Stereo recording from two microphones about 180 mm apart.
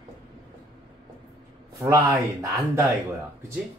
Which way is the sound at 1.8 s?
15° right (ahead or behind).